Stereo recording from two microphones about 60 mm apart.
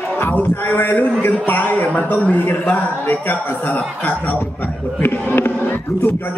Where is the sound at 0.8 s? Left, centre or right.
Left.